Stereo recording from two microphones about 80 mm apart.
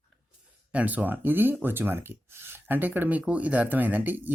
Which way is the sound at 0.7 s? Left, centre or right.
Centre.